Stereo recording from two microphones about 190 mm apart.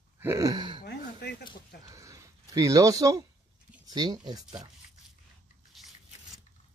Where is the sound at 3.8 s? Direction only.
20° right (ahead or behind).